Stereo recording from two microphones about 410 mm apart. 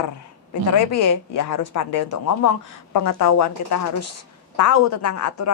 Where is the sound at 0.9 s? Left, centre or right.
Left.